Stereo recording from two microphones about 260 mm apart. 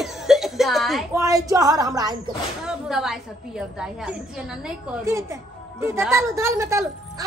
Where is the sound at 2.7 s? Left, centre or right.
Centre.